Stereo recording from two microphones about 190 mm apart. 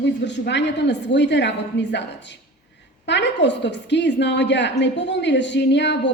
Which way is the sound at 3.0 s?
65° left (ahead or behind).